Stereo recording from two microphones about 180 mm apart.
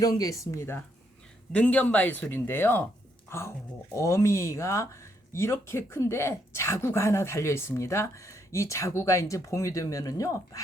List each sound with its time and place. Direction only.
0.0 s speech: 20° left (ahead or behind)